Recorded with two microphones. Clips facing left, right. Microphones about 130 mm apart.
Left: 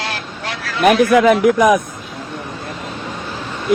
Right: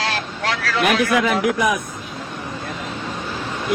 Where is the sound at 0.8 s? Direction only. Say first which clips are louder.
Left 8 dB; 40° left (ahead or behind).